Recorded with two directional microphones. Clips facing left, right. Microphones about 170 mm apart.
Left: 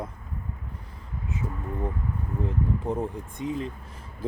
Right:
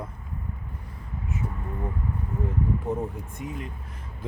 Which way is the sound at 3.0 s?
25° left (ahead or behind).